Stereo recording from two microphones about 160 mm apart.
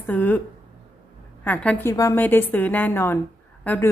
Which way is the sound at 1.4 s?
10° left (ahead or behind).